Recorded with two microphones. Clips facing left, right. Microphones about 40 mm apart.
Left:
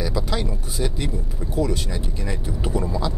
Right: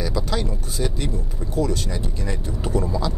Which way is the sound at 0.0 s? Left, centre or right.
Centre.